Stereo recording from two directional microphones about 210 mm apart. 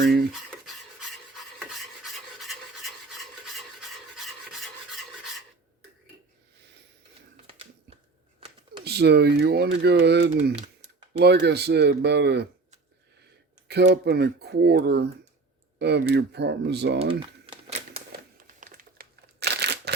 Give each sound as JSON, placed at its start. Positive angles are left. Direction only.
{"t": 0.0, "sound": "a sound", "side_deg": -50}
{"t": 0.6, "sound": "filing", "side_deg": 0}
{"t": 8.8, "sound": "speech", "side_deg": -50}
{"t": 10.5, "sound": "a sound", "side_deg": -30}
{"t": 11.2, "sound": "speech", "side_deg": -50}
{"t": 13.7, "sound": "speech", "side_deg": -50}
{"t": 17.0, "sound": "typing", "side_deg": -25}
{"t": 18.3, "sound": "crumpling", "side_deg": -40}